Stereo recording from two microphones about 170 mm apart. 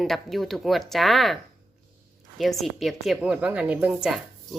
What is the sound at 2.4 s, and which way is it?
Speech, centre (ahead or behind).